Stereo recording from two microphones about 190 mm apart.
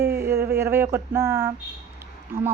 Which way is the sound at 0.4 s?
15° right (ahead or behind).